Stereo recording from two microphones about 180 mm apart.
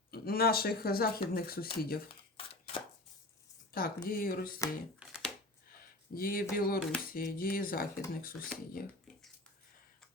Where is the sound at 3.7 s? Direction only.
55° left (ahead or behind).